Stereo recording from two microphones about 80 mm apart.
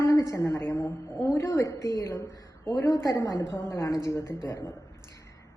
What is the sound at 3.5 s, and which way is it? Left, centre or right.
Speech, left.